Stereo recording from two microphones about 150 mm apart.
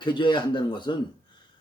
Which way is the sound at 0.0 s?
30° left (ahead or behind).